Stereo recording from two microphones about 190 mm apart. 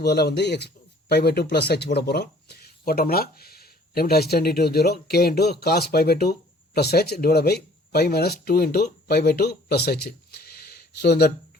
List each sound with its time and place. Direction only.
0.0 s speech: 60° left (ahead or behind)